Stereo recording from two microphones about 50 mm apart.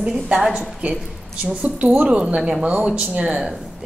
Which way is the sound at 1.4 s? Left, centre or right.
Right.